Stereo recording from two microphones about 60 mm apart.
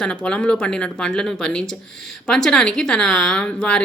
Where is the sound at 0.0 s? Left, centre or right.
Centre.